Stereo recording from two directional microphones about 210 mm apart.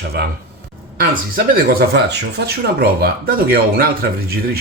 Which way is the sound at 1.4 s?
45° right (ahead or behind).